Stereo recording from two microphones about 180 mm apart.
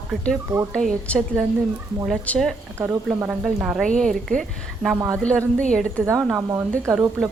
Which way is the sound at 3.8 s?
5° left (ahead or behind).